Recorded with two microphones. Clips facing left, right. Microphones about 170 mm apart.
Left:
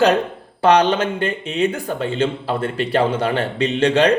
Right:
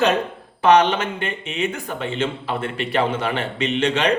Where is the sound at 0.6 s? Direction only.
35° left (ahead or behind).